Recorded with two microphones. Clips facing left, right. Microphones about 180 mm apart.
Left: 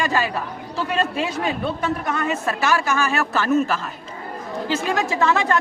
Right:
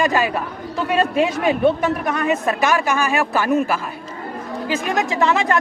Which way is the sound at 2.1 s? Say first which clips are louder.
Right 4 dB; 15° right (ahead or behind).